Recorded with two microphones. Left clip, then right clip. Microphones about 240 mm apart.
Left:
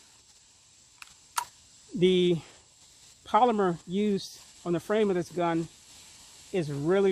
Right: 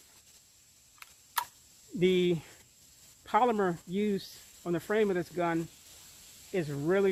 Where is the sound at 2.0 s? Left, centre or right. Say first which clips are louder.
Left 3 dB; left.